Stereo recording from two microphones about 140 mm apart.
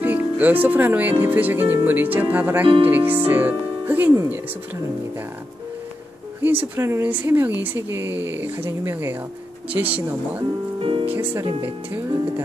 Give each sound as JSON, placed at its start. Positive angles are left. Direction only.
{"t": 0.0, "sound": "speech", "side_deg": -15}
{"t": 6.4, "sound": "speech", "side_deg": -15}
{"t": 10.8, "sound": "speech", "side_deg": -45}
{"t": 11.1, "sound": "speech", "side_deg": -10}